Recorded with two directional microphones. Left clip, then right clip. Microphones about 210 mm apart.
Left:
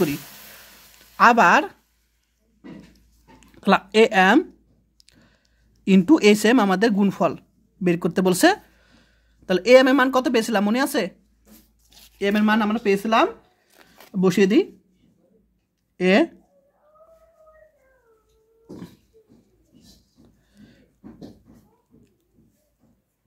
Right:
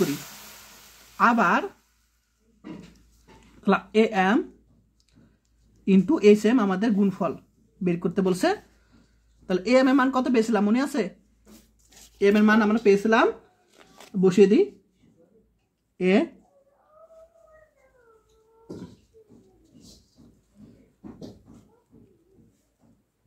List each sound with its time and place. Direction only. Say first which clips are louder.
1.1 s speech: left 6 dB; 45° left (ahead or behind)
3.6 s speech: left 5 dB; 45° left (ahead or behind)
5.9 s speech: left 2 dB; 50° left (ahead or behind)
12.2 s speech: right 1 dB; 30° left (ahead or behind)
13.7 s a sound: even; 15° left (ahead or behind)
14.2 s speech: even; 55° left (ahead or behind)
16.0 s speech: left 4 dB; 50° left (ahead or behind)